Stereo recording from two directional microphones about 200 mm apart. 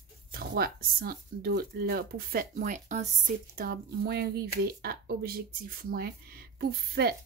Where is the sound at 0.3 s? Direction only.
50° right (ahead or behind).